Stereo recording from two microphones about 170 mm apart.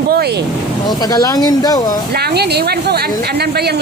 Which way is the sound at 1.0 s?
20° left (ahead or behind).